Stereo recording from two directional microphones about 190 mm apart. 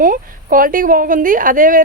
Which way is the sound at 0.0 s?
45° right (ahead or behind).